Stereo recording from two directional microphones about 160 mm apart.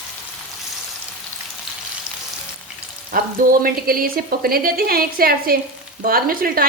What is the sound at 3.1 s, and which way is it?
A woman's voice, 60° right (ahead or behind).